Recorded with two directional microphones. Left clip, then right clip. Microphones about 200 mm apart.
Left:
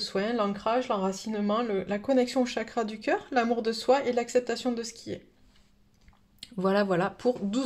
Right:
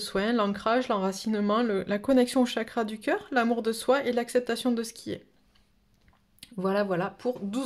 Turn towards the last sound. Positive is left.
turn(degrees=0)  # may be behind; listen again after turning